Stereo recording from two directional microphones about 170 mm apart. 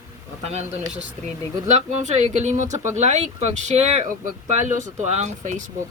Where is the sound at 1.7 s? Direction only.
40° right (ahead or behind).